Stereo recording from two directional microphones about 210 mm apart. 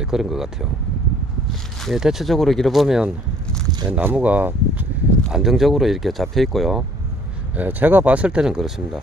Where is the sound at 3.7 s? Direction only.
20° right (ahead or behind).